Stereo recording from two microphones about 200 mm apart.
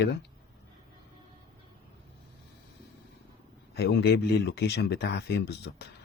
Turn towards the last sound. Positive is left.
turn(degrees=55)  # may be behind; listen again after turning